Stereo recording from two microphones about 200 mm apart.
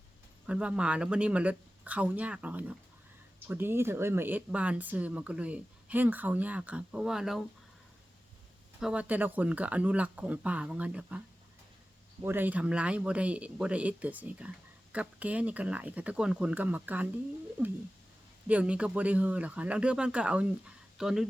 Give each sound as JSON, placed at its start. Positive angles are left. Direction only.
{"t": 0.4, "sound": "speech", "side_deg": -5}
{"t": 8.8, "sound": "speech", "side_deg": -5}
{"t": 12.2, "sound": "speech", "side_deg": -10}